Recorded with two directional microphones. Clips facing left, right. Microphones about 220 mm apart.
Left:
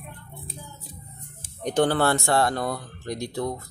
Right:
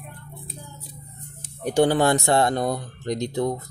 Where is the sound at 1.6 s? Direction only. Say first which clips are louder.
Right 3 dB; 10° right (ahead or behind).